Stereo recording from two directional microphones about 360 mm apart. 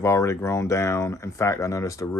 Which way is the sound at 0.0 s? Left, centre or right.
Centre.